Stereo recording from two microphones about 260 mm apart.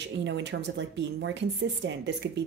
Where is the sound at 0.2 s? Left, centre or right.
Right.